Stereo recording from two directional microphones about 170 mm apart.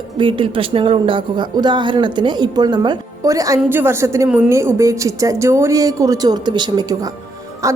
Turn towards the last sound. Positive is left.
turn(degrees=-20)  # may be behind; listen again after turning